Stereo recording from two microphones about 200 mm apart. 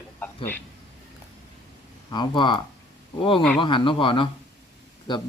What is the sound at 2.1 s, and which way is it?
Speech, 25° left (ahead or behind).